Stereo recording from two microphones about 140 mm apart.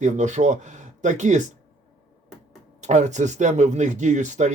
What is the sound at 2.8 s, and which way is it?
Speech, 55° right (ahead or behind).